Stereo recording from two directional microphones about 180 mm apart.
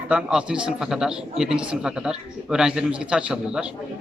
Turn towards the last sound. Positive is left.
turn(degrees=-5)  # may be behind; listen again after turning